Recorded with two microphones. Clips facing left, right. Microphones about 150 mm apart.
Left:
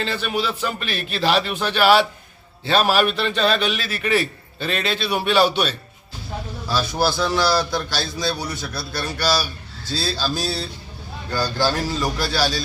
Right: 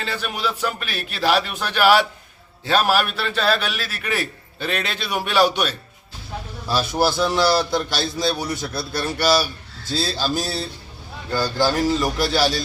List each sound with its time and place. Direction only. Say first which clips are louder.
0.0 s a man's voice: left 2 dB; 10° right (ahead or behind)
11.6 s a man's voice: right 4 dB; 20° right (ahead or behind)